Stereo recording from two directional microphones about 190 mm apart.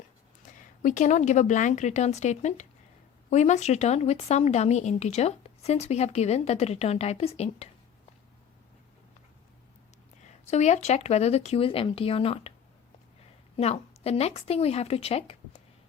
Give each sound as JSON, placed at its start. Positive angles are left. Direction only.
{"t": 0.4, "sound": "speech", "side_deg": 40}
{"t": 10.4, "sound": "speech", "side_deg": 35}
{"t": 13.6, "sound": "speech", "side_deg": 30}